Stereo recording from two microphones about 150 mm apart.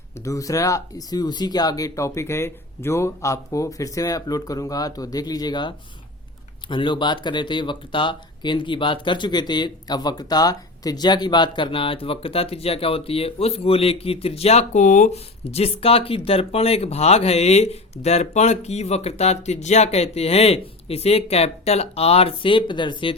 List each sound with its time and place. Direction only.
0.3 s speech: 20° left (ahead or behind)